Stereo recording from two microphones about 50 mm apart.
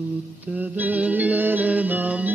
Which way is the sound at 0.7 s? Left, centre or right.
Right.